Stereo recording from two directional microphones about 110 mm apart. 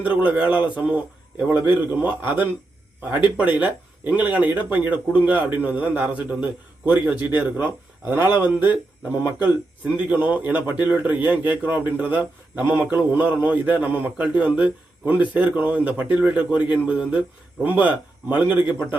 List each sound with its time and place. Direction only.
0.0 s a man's voice: 15° right (ahead or behind)